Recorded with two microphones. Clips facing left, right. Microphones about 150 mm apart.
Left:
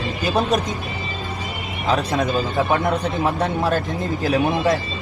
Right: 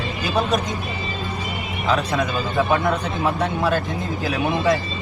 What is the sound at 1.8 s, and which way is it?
Speech, 35° left (ahead or behind).